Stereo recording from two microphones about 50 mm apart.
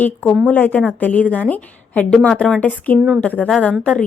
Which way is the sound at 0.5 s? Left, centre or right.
Left.